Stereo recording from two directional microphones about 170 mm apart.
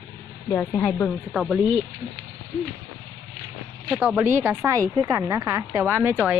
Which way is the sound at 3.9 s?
10° right (ahead or behind).